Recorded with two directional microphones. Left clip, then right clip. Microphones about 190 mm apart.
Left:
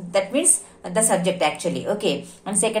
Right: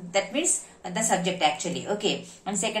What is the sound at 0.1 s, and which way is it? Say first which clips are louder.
A woman's voice: left 5 dB; 40° left (ahead or behind).